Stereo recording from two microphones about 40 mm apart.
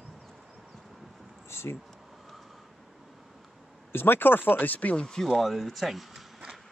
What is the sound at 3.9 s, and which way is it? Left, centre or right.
Speech, left.